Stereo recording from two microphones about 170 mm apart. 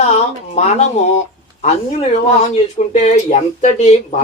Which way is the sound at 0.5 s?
40° left (ahead or behind).